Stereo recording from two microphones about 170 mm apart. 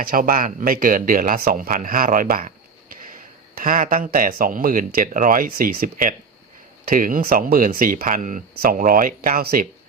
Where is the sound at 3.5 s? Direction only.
50° right (ahead or behind).